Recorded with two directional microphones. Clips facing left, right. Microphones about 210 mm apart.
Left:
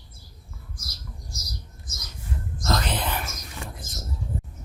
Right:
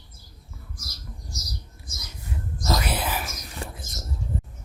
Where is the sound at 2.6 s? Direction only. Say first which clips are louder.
Even; 10° right (ahead or behind).